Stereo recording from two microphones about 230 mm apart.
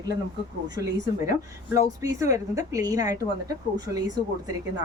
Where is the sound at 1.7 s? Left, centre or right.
Centre.